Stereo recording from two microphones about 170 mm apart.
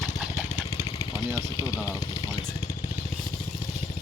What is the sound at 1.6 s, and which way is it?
Vehicle, 20° left (ahead or behind).